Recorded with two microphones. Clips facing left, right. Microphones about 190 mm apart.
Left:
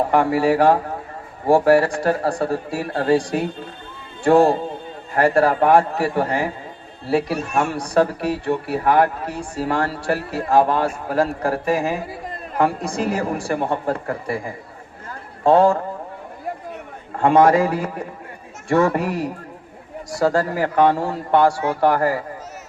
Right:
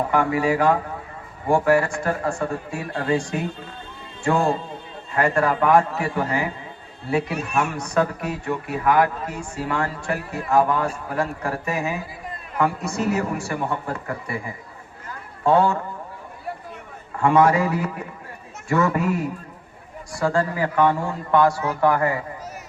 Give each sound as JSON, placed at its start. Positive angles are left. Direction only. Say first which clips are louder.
{"t": 0.1, "sound": "speech", "louder": "left 3 dB", "side_deg": 35}
{"t": 15.4, "sound": "speech", "louder": "left 4 dB", "side_deg": 30}
{"t": 17.2, "sound": "speech", "louder": "left 3 dB", "side_deg": 35}